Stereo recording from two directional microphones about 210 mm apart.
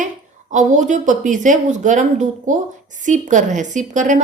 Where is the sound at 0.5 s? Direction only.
35° right (ahead or behind).